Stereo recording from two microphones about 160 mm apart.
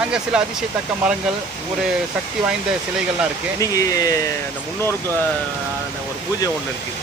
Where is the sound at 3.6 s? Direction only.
20° left (ahead or behind).